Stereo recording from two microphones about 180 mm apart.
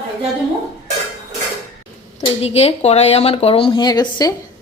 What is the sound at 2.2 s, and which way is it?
Speech, 35° left (ahead or behind).